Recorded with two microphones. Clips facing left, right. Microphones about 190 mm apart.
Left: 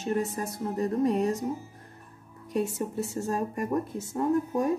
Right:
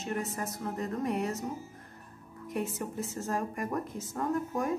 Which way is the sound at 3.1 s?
25° left (ahead or behind).